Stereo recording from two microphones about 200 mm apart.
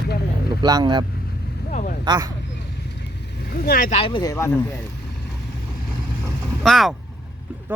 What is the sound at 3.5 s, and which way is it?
Speech, 50° left (ahead or behind).